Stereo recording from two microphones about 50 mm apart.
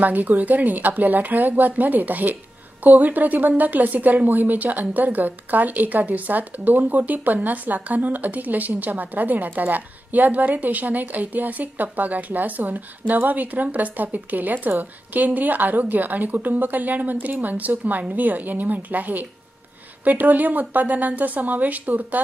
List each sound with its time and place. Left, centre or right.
0.0 s a woman's voice: right